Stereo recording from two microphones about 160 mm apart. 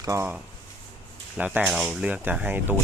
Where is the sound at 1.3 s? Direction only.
10° right (ahead or behind).